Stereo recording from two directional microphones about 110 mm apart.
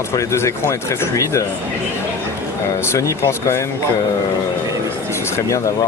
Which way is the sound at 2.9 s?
25° left (ahead or behind).